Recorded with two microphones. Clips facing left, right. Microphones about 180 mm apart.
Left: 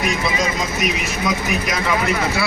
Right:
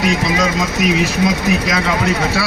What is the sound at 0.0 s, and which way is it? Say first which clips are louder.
Speech: right 4 dB; 70° right (ahead or behind).